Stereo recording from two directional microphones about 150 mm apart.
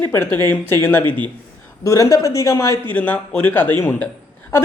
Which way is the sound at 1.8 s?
20° left (ahead or behind).